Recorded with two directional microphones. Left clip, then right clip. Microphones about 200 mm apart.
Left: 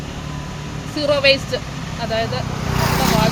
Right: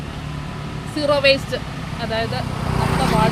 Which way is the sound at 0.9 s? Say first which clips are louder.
Left 1 dB; centre (ahead or behind).